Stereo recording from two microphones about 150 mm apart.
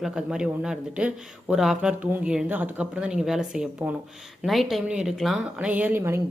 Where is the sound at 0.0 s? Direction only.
5° right (ahead or behind).